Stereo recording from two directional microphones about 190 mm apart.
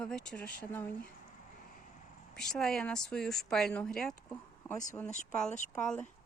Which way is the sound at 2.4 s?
Centre (ahead or behind).